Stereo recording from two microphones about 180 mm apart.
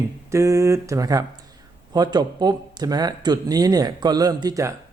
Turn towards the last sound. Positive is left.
turn(degrees=-20)  # may be behind; listen again after turning